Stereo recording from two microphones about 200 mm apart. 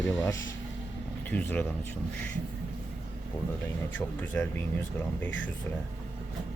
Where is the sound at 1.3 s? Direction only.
10° left (ahead or behind).